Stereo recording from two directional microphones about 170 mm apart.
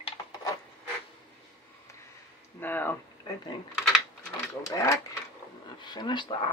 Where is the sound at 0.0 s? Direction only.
25° left (ahead or behind).